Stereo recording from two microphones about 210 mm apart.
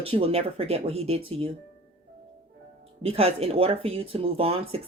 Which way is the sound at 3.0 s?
30° right (ahead or behind).